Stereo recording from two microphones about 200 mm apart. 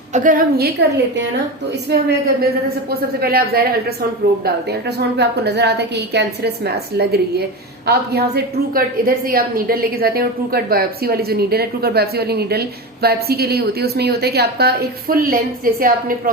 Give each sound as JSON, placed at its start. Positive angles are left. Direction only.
{"t": 0.1, "sound": "a woman's voice", "side_deg": -40}
{"t": 8.7, "sound": "a woman's voice", "side_deg": -45}